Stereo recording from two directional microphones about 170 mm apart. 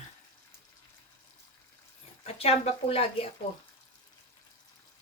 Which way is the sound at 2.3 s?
35° left (ahead or behind).